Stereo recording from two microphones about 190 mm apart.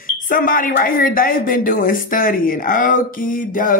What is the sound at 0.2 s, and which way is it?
A woman's voice, 45° left (ahead or behind).